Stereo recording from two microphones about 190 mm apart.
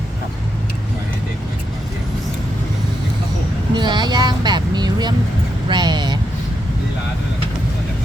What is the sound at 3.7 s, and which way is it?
Vehicle, 25° right (ahead or behind).